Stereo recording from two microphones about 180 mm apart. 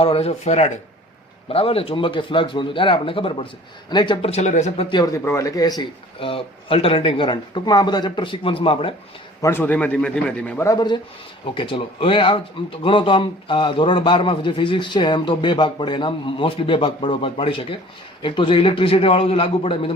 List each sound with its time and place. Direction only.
0.0 s speech: 35° left (ahead or behind)
4.9 s speech: 20° left (ahead or behind)
9.4 s a man's voice: 10° left (ahead or behind)
10.8 s speech: 25° left (ahead or behind)